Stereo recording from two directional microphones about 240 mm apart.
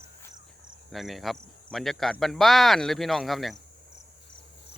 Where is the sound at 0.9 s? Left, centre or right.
Centre.